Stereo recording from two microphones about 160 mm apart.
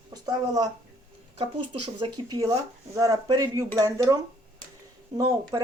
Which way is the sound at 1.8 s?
30° right (ahead or behind).